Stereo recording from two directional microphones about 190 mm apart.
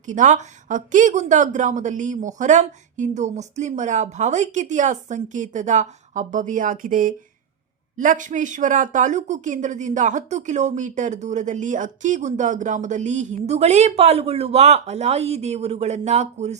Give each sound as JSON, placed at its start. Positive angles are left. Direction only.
{"t": 0.0, "sound": "speech", "side_deg": -40}